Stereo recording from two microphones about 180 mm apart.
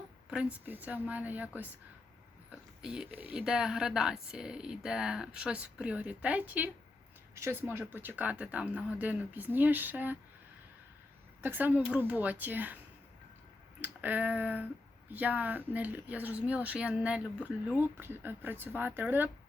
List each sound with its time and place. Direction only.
0.3 s speech: 5° right (ahead or behind)
11.4 s speech: 10° right (ahead or behind)
13.8 s speech: 10° right (ahead or behind)